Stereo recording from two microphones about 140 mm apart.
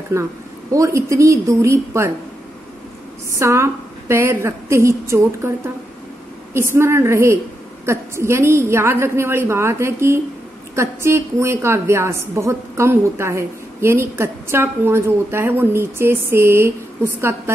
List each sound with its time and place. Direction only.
0.1 s a woman's voice: 20° right (ahead or behind)
3.3 s a woman's voice: 20° right (ahead or behind)
6.5 s a woman's voice: 20° right (ahead or behind)